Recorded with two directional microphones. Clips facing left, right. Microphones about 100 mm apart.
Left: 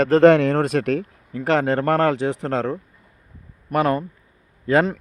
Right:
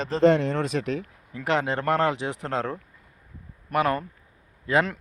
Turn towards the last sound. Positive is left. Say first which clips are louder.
# left 5 dB
turn(degrees=35)  # may be behind; listen again after turning